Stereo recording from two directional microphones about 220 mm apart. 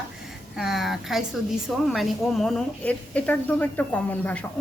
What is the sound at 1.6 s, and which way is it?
A woman's voice, centre (ahead or behind).